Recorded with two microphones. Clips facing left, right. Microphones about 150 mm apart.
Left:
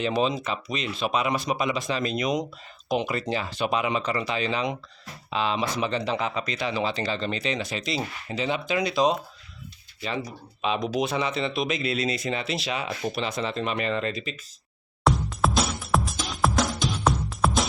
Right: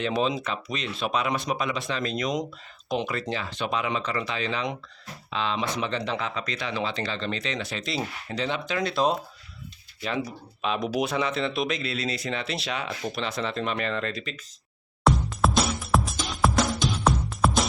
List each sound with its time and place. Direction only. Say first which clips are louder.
0.0 s speech: left 1 dB; centre (ahead or behind)
8.9 s speech: left 1 dB; centre (ahead or behind)
11.8 s speech: left 3 dB; 15° left (ahead or behind)
12.3 s speech: left 2 dB; 5° left (ahead or behind)
15.0 s music: even; centre (ahead or behind)